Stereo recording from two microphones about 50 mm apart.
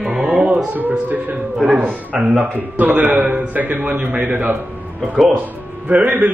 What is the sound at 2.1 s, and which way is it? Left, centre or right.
Speech, right.